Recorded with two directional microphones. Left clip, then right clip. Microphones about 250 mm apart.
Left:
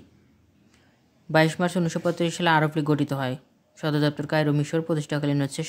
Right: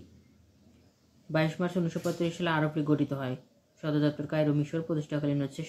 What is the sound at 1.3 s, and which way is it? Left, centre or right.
Speech, left.